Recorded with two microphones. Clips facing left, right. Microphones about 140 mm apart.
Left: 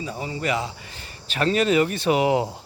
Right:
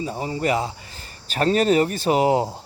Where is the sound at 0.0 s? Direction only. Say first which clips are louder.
Right 4 dB; 40° right (ahead or behind).